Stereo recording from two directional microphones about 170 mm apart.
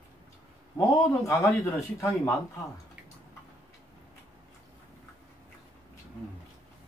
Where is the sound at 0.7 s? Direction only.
20° left (ahead or behind).